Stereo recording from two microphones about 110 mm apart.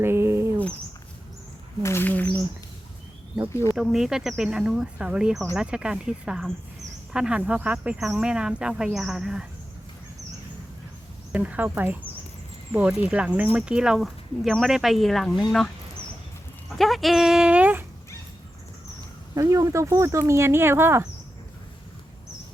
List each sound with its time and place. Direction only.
0.0 s a sound: 25° right (ahead or behind)
1.8 s a sound: 20° left (ahead or behind)
3.8 s speech: 5° right (ahead or behind)
11.3 s speech: 15° right (ahead or behind)
16.7 s speech: centre (ahead or behind)
19.3 s speech: 30° right (ahead or behind)